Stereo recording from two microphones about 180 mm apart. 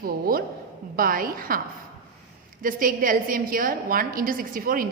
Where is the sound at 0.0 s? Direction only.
55° right (ahead or behind).